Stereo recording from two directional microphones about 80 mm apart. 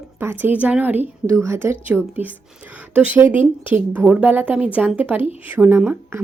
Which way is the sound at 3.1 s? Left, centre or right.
Right.